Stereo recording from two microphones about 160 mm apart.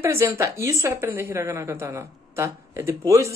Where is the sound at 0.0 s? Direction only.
20° right (ahead or behind).